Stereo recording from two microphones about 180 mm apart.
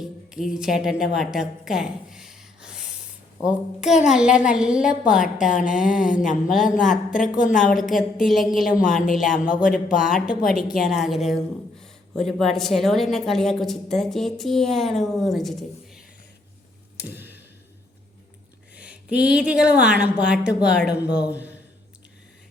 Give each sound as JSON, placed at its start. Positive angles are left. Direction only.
{"t": 0.0, "sound": "a woman's voice", "side_deg": -5}
{"t": 6.9, "sound": "speech", "side_deg": 45}
{"t": 7.5, "sound": "a woman's voice", "side_deg": 0}
{"t": 8.8, "sound": "speech", "side_deg": 50}
{"t": 10.0, "sound": "a woman's voice", "side_deg": -5}
{"t": 17.0, "sound": "a sound", "side_deg": -10}
{"t": 18.8, "sound": "a woman's voice", "side_deg": -5}